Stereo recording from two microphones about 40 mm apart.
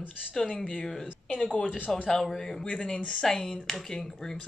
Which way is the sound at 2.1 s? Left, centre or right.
Centre.